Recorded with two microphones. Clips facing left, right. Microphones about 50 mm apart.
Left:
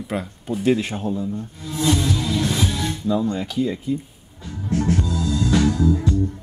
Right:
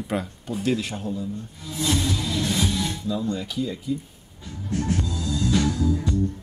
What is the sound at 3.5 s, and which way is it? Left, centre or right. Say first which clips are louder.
Speech: left 5 dB; left.